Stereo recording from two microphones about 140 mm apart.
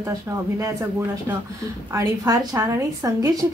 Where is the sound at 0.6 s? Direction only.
25° right (ahead or behind).